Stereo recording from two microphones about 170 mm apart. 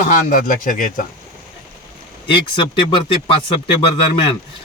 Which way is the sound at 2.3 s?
30° left (ahead or behind).